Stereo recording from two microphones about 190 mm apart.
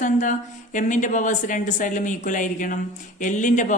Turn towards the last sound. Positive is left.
turn(degrees=40)  # may be behind; listen again after turning